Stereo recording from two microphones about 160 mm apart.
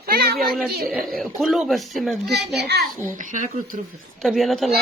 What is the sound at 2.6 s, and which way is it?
Speech, 90° right.